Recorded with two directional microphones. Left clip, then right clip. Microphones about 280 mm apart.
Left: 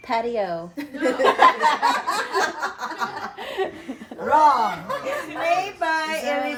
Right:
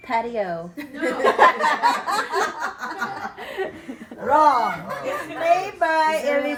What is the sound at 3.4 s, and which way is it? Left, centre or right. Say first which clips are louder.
Chuckle: left 3 dB; left.